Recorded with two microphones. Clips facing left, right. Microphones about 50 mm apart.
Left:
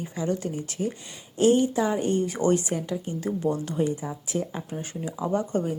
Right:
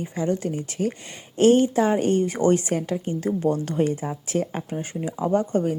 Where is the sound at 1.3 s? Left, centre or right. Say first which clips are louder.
Right 4 dB; right.